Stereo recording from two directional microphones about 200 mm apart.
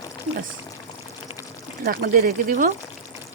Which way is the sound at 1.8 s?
50° right (ahead or behind).